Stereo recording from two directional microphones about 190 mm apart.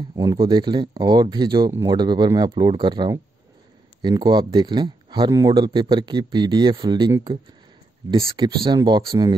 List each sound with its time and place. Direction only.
0.1 s speech: 20° right (ahead or behind)
8.4 s speech: 25° right (ahead or behind)